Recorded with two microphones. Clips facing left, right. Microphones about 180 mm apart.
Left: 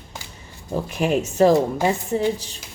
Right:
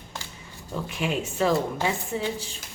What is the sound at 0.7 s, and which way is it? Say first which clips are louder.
A woman's voice: left 7 dB; 40° left (ahead or behind).